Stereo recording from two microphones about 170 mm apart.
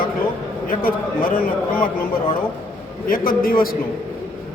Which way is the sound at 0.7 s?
60° left (ahead or behind).